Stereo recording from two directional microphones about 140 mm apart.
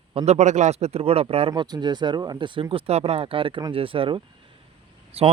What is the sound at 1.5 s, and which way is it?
Speech, 30° right (ahead or behind).